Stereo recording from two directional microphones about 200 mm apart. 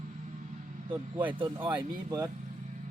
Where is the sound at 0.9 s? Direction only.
10° right (ahead or behind).